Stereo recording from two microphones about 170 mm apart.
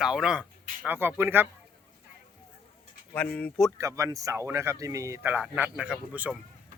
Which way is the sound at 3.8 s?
20° right (ahead or behind).